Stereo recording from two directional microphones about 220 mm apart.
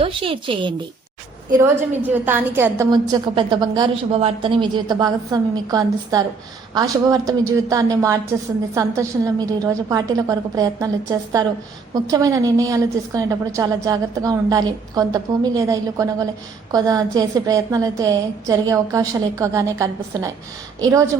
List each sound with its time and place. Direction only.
0.0 s speech: 25° right (ahead or behind)
1.5 s a woman's voice: 10° right (ahead or behind)
2.9 s a woman's voice: 20° right (ahead or behind)